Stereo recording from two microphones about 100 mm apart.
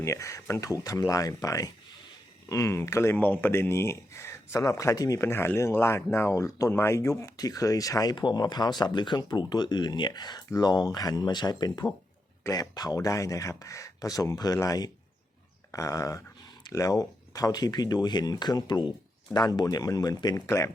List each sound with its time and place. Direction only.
0.0 s speech: 30° left (ahead or behind)